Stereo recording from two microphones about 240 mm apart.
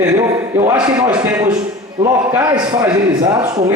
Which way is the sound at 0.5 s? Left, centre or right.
Centre.